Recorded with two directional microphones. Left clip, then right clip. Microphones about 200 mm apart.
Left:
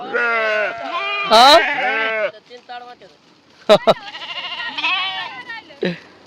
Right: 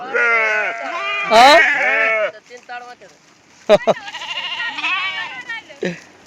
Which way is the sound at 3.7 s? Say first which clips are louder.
Left 1 dB; 15° left (ahead or behind).